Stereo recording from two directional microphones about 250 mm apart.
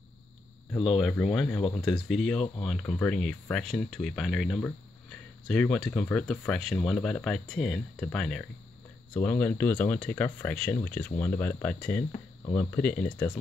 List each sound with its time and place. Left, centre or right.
0.8 s speech: centre